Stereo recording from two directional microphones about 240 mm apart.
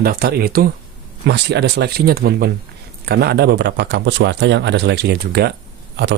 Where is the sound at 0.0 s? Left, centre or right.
Right.